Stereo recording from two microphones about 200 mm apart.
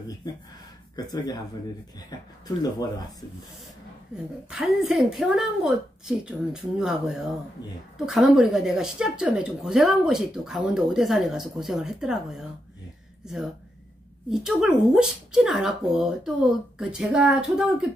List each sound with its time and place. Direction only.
0.9 s speech: 20° left (ahead or behind)
4.5 s a woman's voice: 5° right (ahead or behind)